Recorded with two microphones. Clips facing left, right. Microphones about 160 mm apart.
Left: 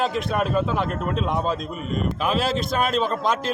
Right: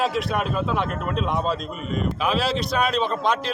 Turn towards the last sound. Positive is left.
turn(degrees=0)  # may be behind; listen again after turning